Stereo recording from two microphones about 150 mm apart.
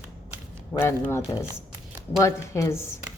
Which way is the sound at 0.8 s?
15° left (ahead or behind).